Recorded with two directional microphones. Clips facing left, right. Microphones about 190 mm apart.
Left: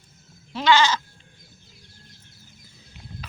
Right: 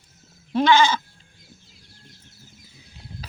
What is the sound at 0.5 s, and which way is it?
Goat, 50° right (ahead or behind).